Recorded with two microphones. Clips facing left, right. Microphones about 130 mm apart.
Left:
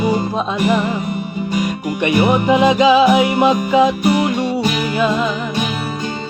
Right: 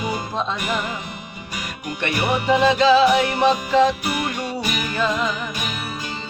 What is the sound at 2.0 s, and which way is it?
Music, 15° left (ahead or behind).